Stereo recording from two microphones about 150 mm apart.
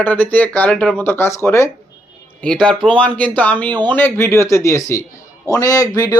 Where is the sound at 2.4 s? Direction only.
5° left (ahead or behind); by 6.0 s 25° left (ahead or behind).